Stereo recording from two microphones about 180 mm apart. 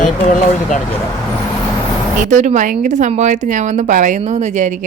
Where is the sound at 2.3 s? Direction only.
45° right (ahead or behind).